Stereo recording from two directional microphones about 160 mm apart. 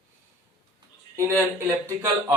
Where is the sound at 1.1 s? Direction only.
15° right (ahead or behind).